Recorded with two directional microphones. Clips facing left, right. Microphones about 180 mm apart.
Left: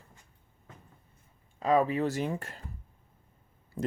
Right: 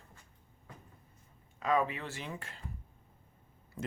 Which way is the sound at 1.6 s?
35° left (ahead or behind).